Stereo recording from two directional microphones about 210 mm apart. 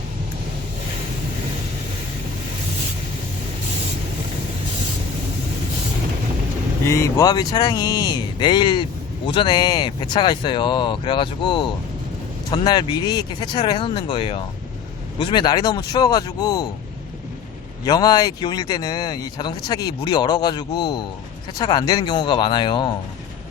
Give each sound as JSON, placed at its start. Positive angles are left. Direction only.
{"t": 6.8, "sound": "speech", "side_deg": 15}
{"t": 17.8, "sound": "speech", "side_deg": 20}